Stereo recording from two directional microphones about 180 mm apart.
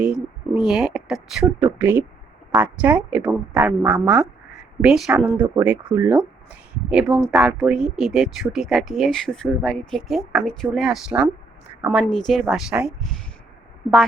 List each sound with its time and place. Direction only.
0.0 s a woman's voice: 5° right (ahead or behind)